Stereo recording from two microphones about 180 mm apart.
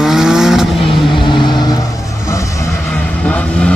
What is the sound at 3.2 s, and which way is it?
Vehicle, 5° left (ahead or behind).